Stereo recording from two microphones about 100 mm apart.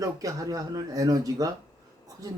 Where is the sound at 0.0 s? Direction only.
35° right (ahead or behind).